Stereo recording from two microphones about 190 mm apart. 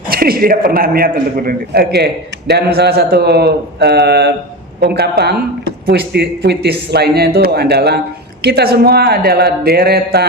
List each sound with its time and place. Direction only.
0.1 s a man's voice: 50° right (ahead or behind)